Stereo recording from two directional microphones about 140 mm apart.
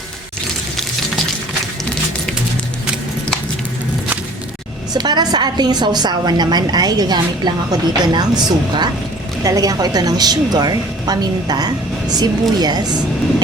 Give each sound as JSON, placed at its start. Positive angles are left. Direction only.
{"t": 4.9, "sound": "a woman's voice", "side_deg": -30}